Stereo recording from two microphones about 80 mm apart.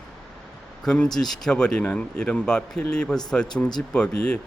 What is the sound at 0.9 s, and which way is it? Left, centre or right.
Speech, centre.